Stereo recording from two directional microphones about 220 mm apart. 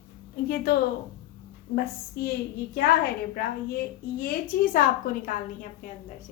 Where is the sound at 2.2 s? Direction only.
45° left (ahead or behind).